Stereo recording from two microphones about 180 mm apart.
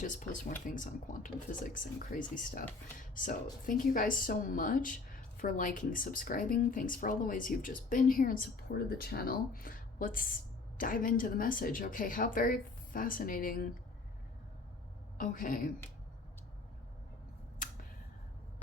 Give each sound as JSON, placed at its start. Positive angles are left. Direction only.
{"t": 0.0, "sound": "a woman's voice", "side_deg": 45}
{"t": 15.2, "sound": "a woman's voice", "side_deg": 50}